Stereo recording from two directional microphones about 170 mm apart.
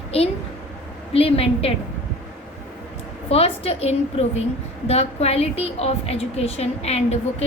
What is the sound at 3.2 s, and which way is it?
A woman's voice, 35° left (ahead or behind).